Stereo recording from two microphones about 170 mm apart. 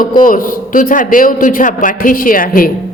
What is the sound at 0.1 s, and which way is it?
A man's voice, 55° left (ahead or behind).